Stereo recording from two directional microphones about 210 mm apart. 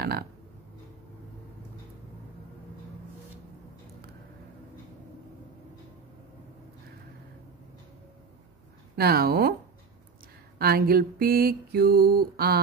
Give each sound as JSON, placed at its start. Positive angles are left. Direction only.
{"t": 8.9, "sound": "mantra", "side_deg": -45}
{"t": 10.6, "sound": "mantra", "side_deg": -45}